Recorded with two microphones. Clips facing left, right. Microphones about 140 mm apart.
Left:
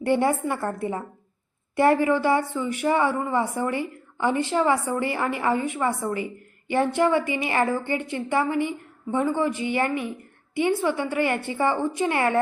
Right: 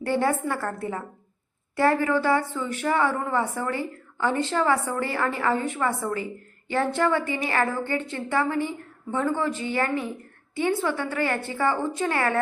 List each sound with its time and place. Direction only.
0.0 s a woman's voice: 20° left (ahead or behind)